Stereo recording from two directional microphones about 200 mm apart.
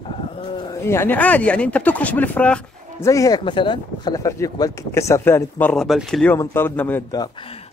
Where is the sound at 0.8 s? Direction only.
10° left (ahead or behind).